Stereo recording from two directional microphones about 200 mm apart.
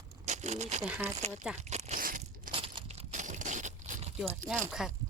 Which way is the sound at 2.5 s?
25° right (ahead or behind).